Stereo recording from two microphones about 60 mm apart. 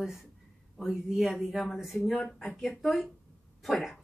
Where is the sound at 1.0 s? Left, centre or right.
Centre.